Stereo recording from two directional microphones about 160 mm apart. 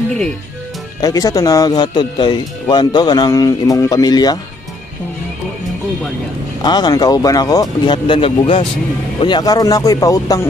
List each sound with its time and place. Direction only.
1.0 s speech: 25° left (ahead or behind)
6.6 s speech: 25° left (ahead or behind)